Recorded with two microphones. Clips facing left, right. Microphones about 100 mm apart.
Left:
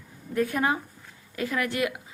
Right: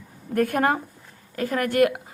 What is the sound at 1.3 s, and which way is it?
Speech, 45° right (ahead or behind).